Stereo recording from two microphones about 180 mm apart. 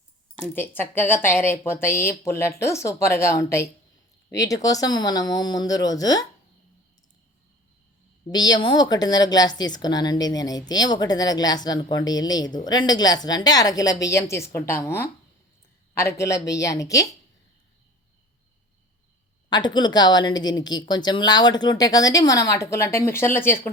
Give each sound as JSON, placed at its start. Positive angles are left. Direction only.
{"t": 0.5, "sound": "a woman's voice", "side_deg": 10}
{"t": 8.3, "sound": "a woman's voice", "side_deg": 20}
{"t": 19.5, "sound": "speech", "side_deg": 25}